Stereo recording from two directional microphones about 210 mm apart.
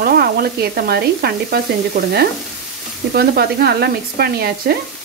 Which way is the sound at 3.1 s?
45° right (ahead or behind).